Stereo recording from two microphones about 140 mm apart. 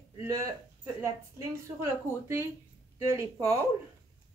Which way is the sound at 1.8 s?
15° right (ahead or behind).